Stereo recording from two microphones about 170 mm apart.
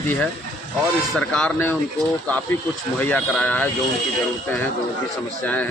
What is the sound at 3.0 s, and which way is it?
Speech, 10° left (ahead or behind).